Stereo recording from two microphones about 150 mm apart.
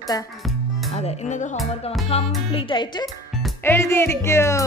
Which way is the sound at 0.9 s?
50° left (ahead or behind).